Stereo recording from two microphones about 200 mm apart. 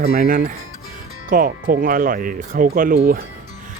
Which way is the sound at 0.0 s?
40° right (ahead or behind).